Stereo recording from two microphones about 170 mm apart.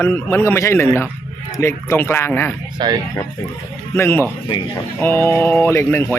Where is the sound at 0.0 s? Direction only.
15° left (ahead or behind).